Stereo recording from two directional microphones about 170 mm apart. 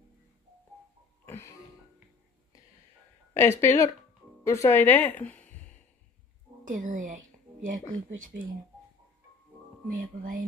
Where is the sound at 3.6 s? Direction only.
15° left (ahead or behind).